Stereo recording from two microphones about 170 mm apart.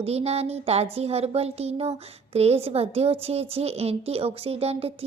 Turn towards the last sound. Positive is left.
turn(degrees=-35)  # may be behind; listen again after turning